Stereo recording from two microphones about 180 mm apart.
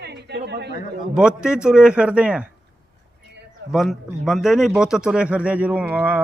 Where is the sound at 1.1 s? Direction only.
5° right (ahead or behind).